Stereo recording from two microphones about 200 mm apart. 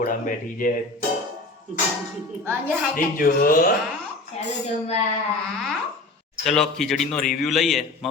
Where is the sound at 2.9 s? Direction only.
45° left (ahead or behind).